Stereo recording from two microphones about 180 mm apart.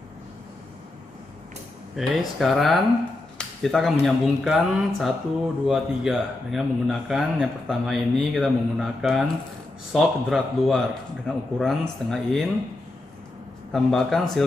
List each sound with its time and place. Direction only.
2.0 s speech: centre (ahead or behind)
3.3 s a sound: centre (ahead or behind)
4.0 s speech: centre (ahead or behind)
13.7 s speech: centre (ahead or behind)